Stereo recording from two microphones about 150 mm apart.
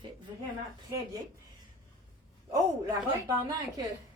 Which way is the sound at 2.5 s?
25° right (ahead or behind).